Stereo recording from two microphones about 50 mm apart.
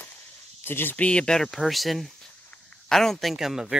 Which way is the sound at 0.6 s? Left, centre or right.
Left.